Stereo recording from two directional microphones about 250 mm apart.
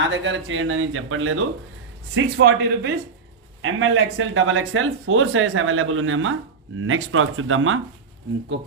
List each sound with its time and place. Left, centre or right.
0.0 s speech: right